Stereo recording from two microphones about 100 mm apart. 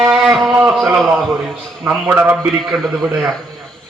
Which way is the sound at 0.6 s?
5° right (ahead or behind).